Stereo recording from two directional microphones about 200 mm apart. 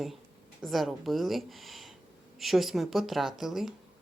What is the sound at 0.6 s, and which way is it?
Speech, centre (ahead or behind).